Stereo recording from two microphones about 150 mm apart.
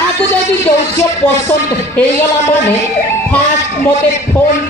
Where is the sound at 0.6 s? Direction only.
15° left (ahead or behind).